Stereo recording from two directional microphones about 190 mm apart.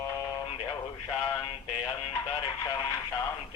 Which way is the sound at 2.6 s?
15° left (ahead or behind).